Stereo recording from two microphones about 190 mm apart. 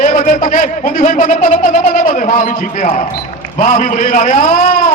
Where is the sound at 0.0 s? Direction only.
40° left (ahead or behind).